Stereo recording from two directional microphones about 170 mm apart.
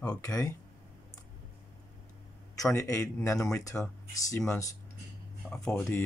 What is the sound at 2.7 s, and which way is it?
Speech, 15° left (ahead or behind).